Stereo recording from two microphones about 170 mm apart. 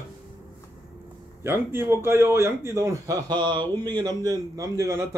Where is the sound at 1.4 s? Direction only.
15° right (ahead or behind).